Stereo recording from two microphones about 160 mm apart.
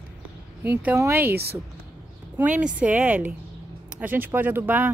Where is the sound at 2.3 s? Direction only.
10° right (ahead or behind).